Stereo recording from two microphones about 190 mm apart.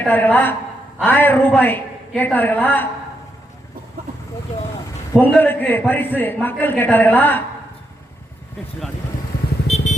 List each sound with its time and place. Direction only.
0.0 s a man's voice: 10° left (ahead or behind)
5.2 s a man's voice: 10° left (ahead or behind)
9.6 s vehicle: 35° left (ahead or behind)